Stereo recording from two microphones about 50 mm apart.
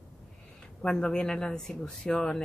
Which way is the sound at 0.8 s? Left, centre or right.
Centre.